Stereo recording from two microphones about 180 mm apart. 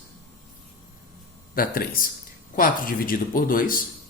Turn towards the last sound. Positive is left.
turn(degrees=50)  # may be behind; listen again after turning